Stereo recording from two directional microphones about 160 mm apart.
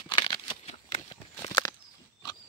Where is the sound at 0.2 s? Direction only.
35° left (ahead or behind).